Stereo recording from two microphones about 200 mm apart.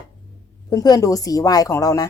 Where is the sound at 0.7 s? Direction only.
20° left (ahead or behind).